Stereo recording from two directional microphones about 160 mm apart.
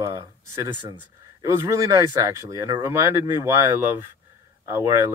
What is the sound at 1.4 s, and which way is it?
Speech, 20° right (ahead or behind).